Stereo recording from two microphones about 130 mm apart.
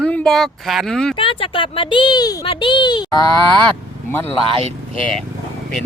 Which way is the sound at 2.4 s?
40° left (ahead or behind).